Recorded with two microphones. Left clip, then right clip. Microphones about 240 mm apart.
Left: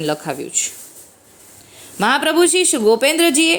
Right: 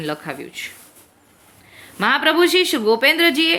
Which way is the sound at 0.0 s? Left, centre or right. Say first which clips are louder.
Left 5 dB; centre.